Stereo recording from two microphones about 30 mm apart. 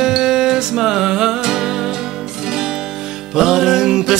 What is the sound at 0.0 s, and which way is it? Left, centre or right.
Music, right.